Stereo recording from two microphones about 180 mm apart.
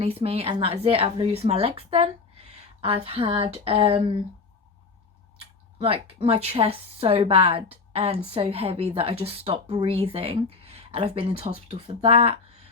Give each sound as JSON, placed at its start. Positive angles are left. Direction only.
{"t": 0.0, "sound": "speech", "side_deg": -30}
{"t": 5.8, "sound": "speech", "side_deg": -35}